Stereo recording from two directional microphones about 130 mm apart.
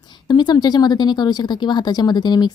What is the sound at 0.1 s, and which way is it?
A woman's voice, 35° left (ahead or behind).